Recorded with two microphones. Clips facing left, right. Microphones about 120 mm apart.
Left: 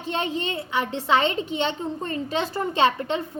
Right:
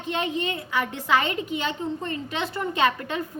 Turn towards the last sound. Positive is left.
turn(degrees=25)  # may be behind; listen again after turning